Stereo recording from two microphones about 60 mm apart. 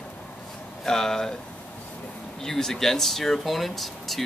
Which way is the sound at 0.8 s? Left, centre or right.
Centre.